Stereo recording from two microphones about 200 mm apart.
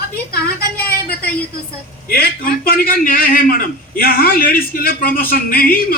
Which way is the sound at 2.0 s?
50° left (ahead or behind).